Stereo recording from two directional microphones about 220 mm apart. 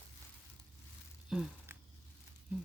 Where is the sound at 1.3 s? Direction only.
5° right (ahead or behind).